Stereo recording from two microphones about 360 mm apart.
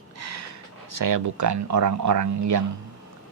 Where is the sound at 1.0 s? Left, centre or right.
Right.